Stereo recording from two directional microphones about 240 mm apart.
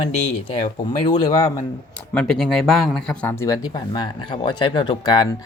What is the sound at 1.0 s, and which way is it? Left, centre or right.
Speech, centre.